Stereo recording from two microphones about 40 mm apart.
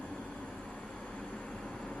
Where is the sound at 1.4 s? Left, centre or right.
Centre.